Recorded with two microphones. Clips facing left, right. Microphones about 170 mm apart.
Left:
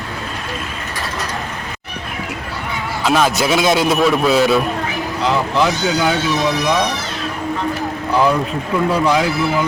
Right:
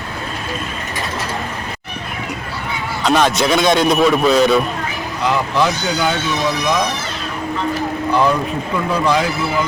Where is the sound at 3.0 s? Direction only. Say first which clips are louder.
Right 1 dB; 5° left (ahead or behind).